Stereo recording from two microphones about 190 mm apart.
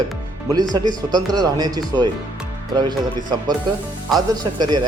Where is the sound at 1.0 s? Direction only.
20° right (ahead or behind).